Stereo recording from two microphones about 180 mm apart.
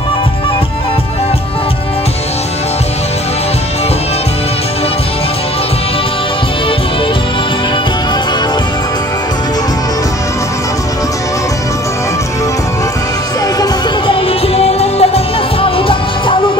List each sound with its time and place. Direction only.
13.6 s music: 30° left (ahead or behind)